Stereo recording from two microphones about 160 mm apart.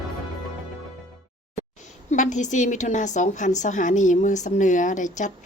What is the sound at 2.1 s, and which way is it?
A woman's voice, 50° left (ahead or behind).